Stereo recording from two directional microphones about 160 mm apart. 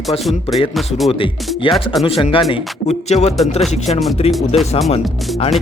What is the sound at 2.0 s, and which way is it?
Speech, 35° left (ahead or behind).